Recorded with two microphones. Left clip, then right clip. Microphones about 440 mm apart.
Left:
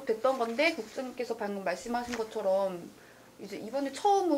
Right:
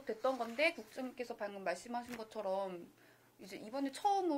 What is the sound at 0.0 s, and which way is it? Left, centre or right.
Speech, right.